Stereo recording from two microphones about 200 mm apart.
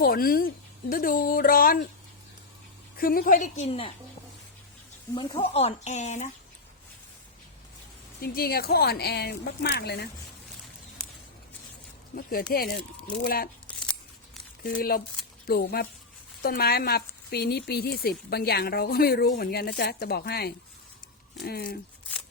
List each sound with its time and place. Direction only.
0.0 s speech: 45° left (ahead or behind)
3.0 s speech: 45° left (ahead or behind); by 3.9 s 30° left (ahead or behind)
5.1 s speech: 25° left (ahead or behind)
8.2 s speech: 50° left (ahead or behind)
12.1 s speech: 45° left (ahead or behind)
14.6 s speech: 50° left (ahead or behind)